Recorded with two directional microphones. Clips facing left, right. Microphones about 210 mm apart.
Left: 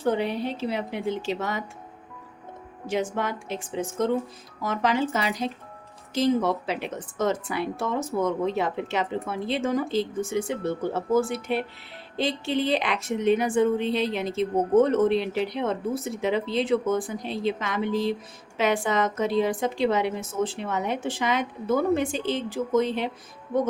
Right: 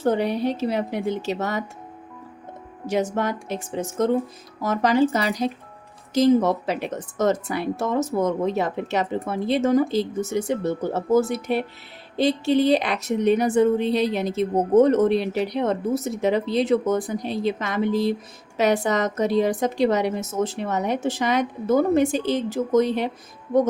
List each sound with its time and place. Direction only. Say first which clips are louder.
0.0 s a woman's voice: right 4 dB; 40° right (ahead or behind)
2.8 s a woman's voice: right 4 dB; 40° right (ahead or behind)